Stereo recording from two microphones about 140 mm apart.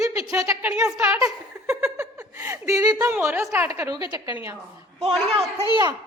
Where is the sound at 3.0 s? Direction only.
15° right (ahead or behind).